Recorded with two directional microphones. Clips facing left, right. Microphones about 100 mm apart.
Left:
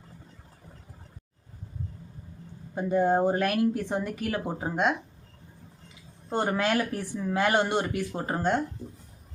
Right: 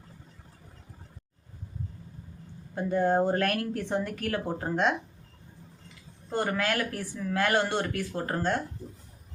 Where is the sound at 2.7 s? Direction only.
15° left (ahead or behind).